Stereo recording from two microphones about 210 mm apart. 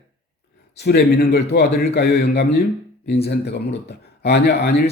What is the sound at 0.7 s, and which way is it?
Speech, 50° left (ahead or behind).